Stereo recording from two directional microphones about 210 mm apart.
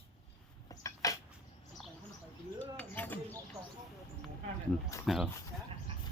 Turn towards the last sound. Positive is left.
turn(degrees=0)  # may be behind; listen again after turning